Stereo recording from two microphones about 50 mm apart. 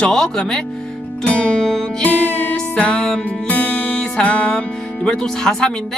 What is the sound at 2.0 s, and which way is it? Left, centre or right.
Music, left.